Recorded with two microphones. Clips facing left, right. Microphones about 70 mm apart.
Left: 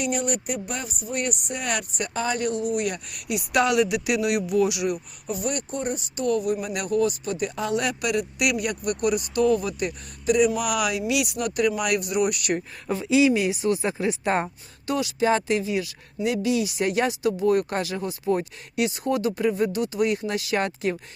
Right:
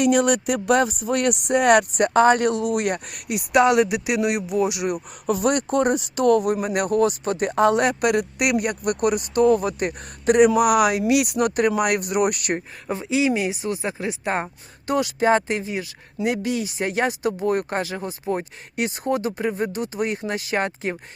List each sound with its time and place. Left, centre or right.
0.0 s speech: right
2.9 s speech: right
3.5 s speech: right
4.9 s speech: right; by 14.5 s centre
14.8 s speech: right